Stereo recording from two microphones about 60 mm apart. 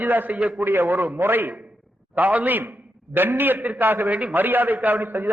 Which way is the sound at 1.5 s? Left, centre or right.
Centre.